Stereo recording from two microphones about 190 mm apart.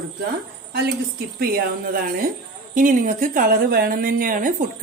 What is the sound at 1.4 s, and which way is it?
Speech, 55° right (ahead or behind).